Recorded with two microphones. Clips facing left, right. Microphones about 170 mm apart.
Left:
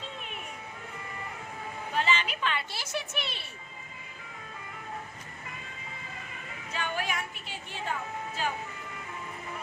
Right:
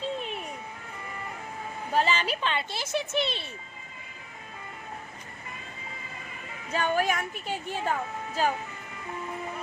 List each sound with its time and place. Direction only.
1.9 s speech: 40° right (ahead or behind)
6.7 s a woman's voice: 45° right (ahead or behind)